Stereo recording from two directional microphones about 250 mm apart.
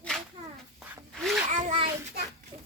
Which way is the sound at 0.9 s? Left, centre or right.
Centre.